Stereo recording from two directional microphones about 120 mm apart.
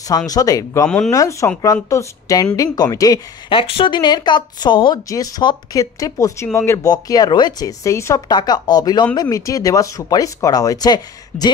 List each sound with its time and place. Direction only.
0.3 s speech: 30° left (ahead or behind)
0.8 s speech: 5° left (ahead or behind)
1.1 s speech: 30° left (ahead or behind)
3.4 s speech: 50° left (ahead or behind); by 8.2 s 25° left (ahead or behind)
8.3 s speech: 35° left (ahead or behind)